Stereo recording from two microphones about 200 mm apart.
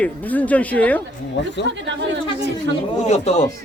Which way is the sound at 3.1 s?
35° left (ahead or behind).